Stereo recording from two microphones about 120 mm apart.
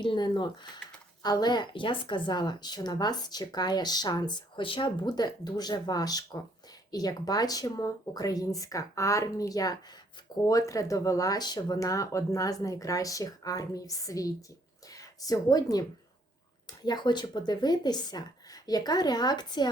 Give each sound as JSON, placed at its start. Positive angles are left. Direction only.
{"t": 0.0, "sound": "speech", "side_deg": 40}